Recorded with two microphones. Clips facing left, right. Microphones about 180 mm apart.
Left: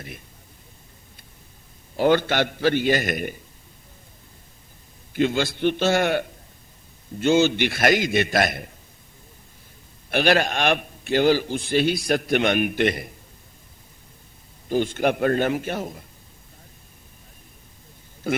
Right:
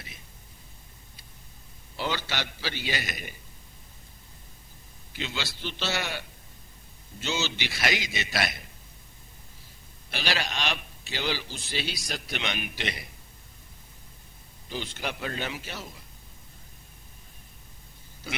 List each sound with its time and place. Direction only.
2.0 s a man's voice: 55° left (ahead or behind)
5.1 s a man's voice: 50° left (ahead or behind)
10.1 s a man's voice: 55° left (ahead or behind)
14.7 s a man's voice: 50° left (ahead or behind)
18.3 s a man's voice: 50° left (ahead or behind)